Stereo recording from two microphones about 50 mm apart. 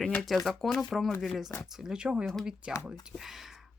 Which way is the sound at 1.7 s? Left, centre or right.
Centre.